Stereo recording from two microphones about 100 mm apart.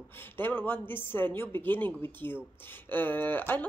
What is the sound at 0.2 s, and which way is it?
A woman's voice, 20° left (ahead or behind).